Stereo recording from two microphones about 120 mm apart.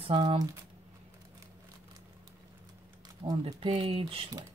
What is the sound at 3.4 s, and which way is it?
Speech, 50° right (ahead or behind).